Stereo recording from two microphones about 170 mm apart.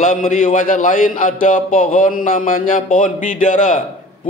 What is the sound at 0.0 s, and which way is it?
A man's voice, 50° left (ahead or behind).